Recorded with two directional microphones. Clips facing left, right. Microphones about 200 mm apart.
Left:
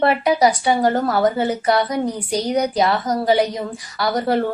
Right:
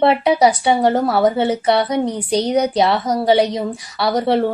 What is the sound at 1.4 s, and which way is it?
A woman's voice, 25° right (ahead or behind).